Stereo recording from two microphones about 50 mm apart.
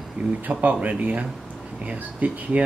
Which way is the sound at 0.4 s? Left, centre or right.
Right.